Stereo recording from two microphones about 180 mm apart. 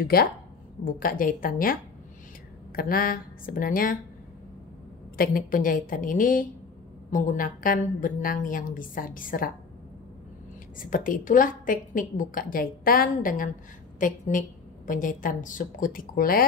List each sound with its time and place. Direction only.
0.0 s a woman's voice: 60° left (ahead or behind)
5.1 s a woman's voice: 55° left (ahead or behind)
10.9 s a woman's voice: 50° left (ahead or behind)